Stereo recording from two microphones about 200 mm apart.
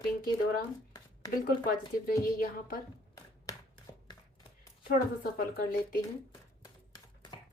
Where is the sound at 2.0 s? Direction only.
45° left (ahead or behind).